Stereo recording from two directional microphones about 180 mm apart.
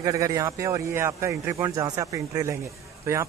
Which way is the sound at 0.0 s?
20° right (ahead or behind).